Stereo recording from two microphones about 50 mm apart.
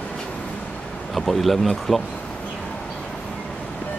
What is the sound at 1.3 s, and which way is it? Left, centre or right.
Speech, centre.